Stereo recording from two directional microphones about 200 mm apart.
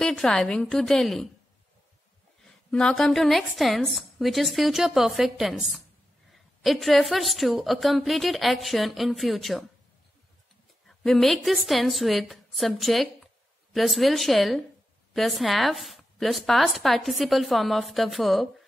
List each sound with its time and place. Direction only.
0.0 s a woman's voice: 5° left (ahead or behind)
2.4 s a woman's voice: 5° left (ahead or behind)
10.9 s a woman's voice: centre (ahead or behind)